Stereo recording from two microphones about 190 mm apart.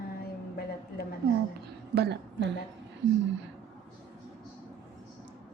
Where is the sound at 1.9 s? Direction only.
60° right (ahead or behind).